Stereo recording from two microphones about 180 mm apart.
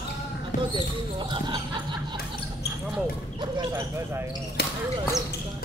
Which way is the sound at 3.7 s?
15° right (ahead or behind).